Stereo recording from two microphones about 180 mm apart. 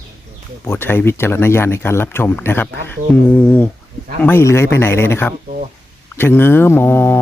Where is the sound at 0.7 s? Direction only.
15° left (ahead or behind).